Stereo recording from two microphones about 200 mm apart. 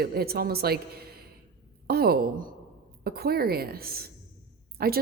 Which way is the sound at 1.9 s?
50° right (ahead or behind).